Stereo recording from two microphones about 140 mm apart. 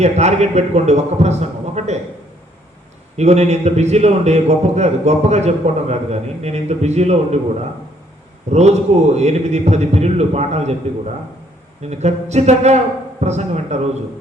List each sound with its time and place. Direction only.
0.0 s a man's voice: 55° right (ahead or behind)
3.2 s a man's voice: 50° right (ahead or behind)
8.5 s a man's voice: 50° right (ahead or behind)